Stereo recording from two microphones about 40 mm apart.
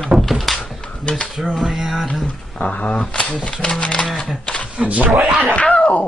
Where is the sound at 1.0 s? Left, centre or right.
Left.